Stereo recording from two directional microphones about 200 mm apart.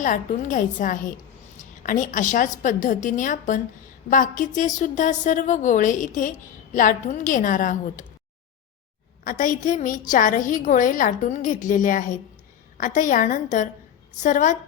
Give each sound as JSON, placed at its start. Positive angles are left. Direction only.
{"t": 0.0, "sound": "a woman's voice", "side_deg": 40}
{"t": 9.2, "sound": "a woman's voice", "side_deg": 40}